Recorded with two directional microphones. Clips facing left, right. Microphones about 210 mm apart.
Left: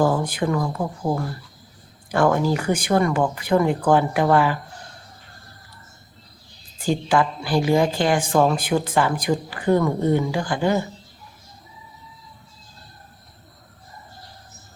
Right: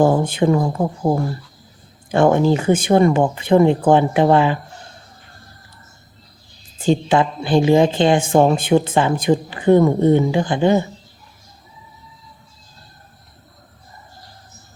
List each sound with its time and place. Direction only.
0.0 s a woman's voice: 25° right (ahead or behind)
6.7 s a woman's voice: 25° right (ahead or behind)